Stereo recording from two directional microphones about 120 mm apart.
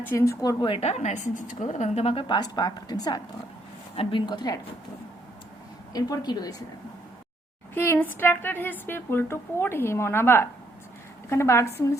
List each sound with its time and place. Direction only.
0.0 s a woman's voice: 20° left (ahead or behind)
0.6 s a woman's voice: 45° left (ahead or behind)
0.9 s a woman's voice: 70° left (ahead or behind)
2.2 s a woman's voice: 35° left (ahead or behind)
5.9 s a woman's voice: 30° left (ahead or behind)
7.7 s a woman's voice: 20° left (ahead or behind)